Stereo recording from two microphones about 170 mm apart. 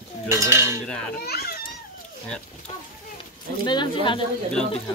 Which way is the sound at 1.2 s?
65° left (ahead or behind).